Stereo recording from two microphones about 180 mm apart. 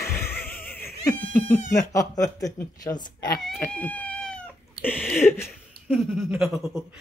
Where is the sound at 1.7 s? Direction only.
20° left (ahead or behind).